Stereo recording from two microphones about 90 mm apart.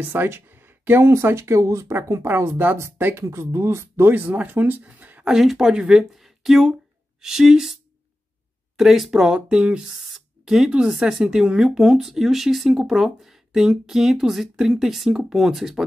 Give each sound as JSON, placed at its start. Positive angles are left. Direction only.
{"t": 0.0, "sound": "speech", "side_deg": -20}
{"t": 5.3, "sound": "speech", "side_deg": -5}
{"t": 8.7, "sound": "speech", "side_deg": -5}